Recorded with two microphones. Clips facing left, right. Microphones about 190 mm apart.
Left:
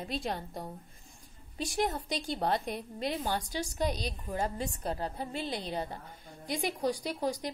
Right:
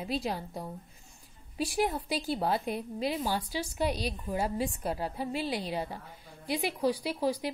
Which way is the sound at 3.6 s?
40° left (ahead or behind).